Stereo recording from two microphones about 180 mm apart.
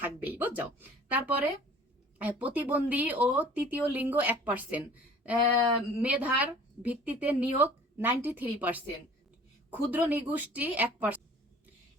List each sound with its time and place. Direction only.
0.0 s a woman's voice: 10° right (ahead or behind)